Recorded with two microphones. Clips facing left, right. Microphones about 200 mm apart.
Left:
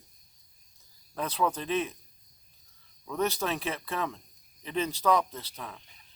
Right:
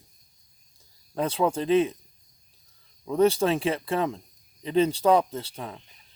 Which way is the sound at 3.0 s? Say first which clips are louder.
Right 9 dB; 30° right (ahead or behind).